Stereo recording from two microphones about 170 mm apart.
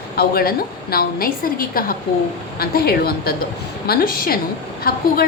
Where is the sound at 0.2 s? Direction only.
60° left (ahead or behind).